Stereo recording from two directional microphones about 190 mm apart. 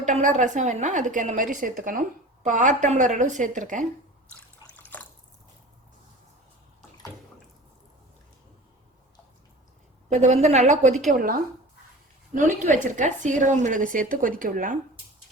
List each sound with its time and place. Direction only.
0.0 s a woman's voice: 40° right (ahead or behind)
10.1 s a woman's voice: 35° right (ahead or behind)
12.8 s a woman's voice: 40° right (ahead or behind)